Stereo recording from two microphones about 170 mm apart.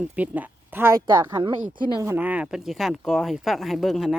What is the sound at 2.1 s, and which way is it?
Speech, 10° right (ahead or behind).